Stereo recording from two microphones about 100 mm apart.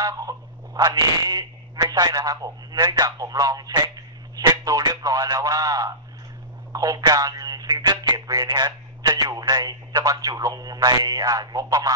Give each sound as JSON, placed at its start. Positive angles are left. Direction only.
{"t": 0.0, "sound": "speech", "side_deg": -35}